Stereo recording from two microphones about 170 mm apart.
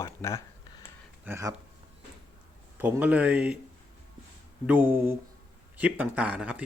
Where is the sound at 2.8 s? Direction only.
10° right (ahead or behind).